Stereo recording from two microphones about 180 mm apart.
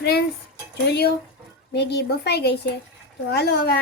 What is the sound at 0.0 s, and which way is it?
Dishes, 65° left (ahead or behind).